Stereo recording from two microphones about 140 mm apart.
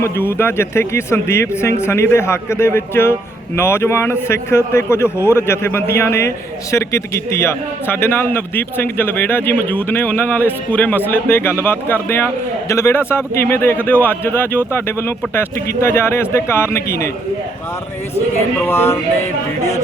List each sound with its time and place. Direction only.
0.0 s a man's voice: 15° left (ahead or behind)
18.6 s a man's voice: 15° left (ahead or behind)